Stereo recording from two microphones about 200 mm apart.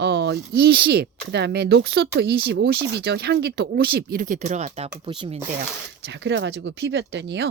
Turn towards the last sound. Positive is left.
turn(degrees=-60)  # may be behind; listen again after turning